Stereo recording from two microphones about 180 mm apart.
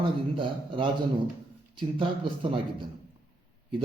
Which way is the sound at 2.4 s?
30° right (ahead or behind).